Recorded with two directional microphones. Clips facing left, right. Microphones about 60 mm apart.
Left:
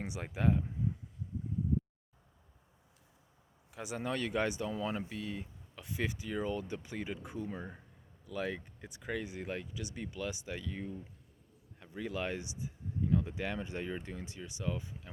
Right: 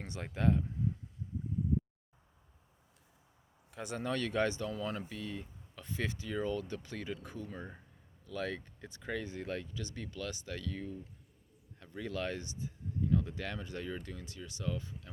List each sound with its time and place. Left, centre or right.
0.0 s speech: centre
3.7 s speech: centre
7.7 s speech: centre